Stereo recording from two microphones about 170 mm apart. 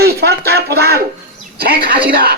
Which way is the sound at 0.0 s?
65° right (ahead or behind).